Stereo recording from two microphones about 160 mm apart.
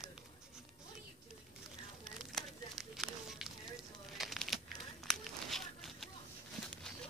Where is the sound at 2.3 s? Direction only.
Centre (ahead or behind).